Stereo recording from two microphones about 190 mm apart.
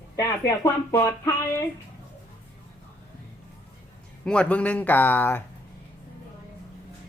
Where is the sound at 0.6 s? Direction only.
15° left (ahead or behind).